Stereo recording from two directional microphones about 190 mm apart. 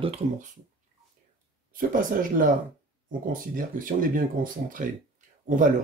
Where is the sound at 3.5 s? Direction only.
45° right (ahead or behind).